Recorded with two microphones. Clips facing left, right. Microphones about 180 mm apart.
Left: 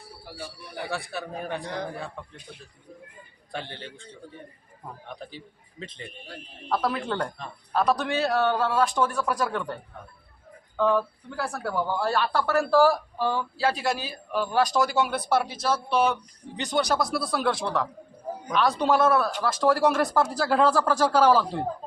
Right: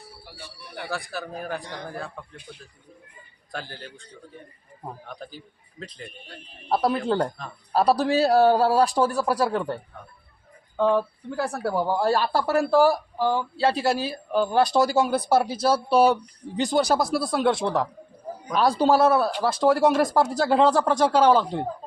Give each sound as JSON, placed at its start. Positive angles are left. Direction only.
{"t": 0.9, "sound": "a man's voice", "side_deg": 0}
{"t": 3.5, "sound": "a man's voice", "side_deg": 0}
{"t": 5.0, "sound": "a man's voice", "side_deg": 0}
{"t": 6.7, "sound": "a man's voice", "side_deg": -30}